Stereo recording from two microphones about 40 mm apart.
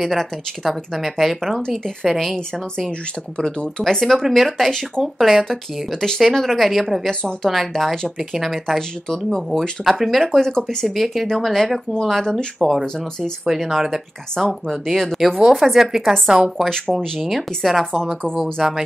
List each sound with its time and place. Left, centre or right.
0.0 s speech: centre
4.6 s speech: centre
5.0 s speech: centre
5.5 s speech: centre
8.6 s speech: centre
10.2 s speech: centre
12.5 s speech: centre
14.3 s speech: centre
14.7 s speech: centre
16.6 s speech: centre
17.3 s speech: centre
17.9 s speech: centre